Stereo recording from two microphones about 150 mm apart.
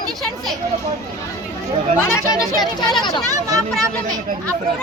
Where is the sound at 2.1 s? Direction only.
25° left (ahead or behind).